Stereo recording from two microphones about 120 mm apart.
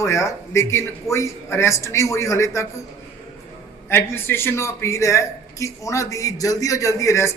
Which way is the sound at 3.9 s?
20° left (ahead or behind).